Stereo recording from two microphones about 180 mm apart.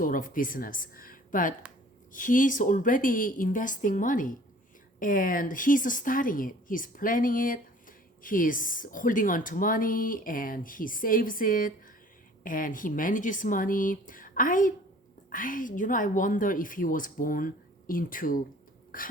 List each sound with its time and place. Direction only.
0.0 s a woman's voice: 50° left (ahead or behind)